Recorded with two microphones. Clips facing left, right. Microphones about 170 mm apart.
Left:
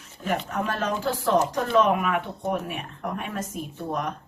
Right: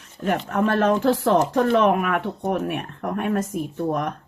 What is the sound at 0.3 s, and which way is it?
Speech, 50° right (ahead or behind).